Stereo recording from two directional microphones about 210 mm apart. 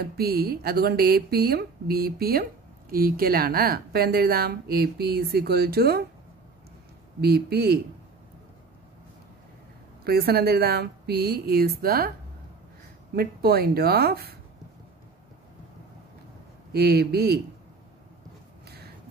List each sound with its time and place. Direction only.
0.0 s speech: 45° right (ahead or behind)
7.2 s speech: 50° right (ahead or behind)
10.0 s speech: 45° right (ahead or behind)
13.1 s speech: 45° right (ahead or behind)
16.7 s speech: 45° right (ahead or behind)